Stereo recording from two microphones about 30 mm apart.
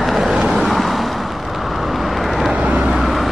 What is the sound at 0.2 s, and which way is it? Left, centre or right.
Vehicle, right.